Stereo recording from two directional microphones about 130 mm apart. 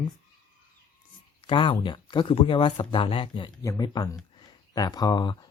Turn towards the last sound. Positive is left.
turn(degrees=30)  # may be behind; listen again after turning